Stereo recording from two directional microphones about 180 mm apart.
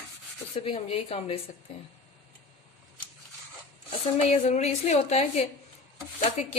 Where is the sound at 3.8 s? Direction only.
40° left (ahead or behind).